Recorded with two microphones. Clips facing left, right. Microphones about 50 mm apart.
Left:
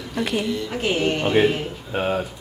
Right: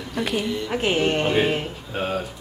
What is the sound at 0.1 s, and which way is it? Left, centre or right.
Speech, centre.